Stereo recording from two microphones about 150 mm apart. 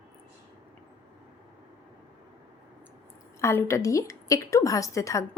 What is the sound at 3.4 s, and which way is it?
A woman's voice, 20° left (ahead or behind).